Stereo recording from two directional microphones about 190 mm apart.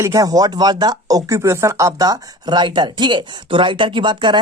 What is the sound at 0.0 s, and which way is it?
Speech, 15° right (ahead or behind).